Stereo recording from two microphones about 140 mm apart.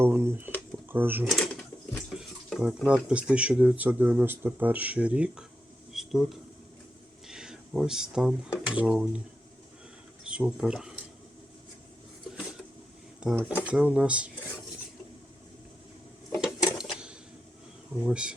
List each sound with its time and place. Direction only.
0.0 s speech: 15° right (ahead or behind)
1.3 s a sound: centre (ahead or behind)
2.8 s speech: 10° right (ahead or behind)
5.9 s a sound: centre (ahead or behind)
7.3 s speech: 5° right (ahead or behind)
10.2 s speech: 5° right (ahead or behind)
13.1 s speech: 10° right (ahead or behind)
16.7 s a sound: 5° right (ahead or behind)
18.0 s speech: 5° right (ahead or behind)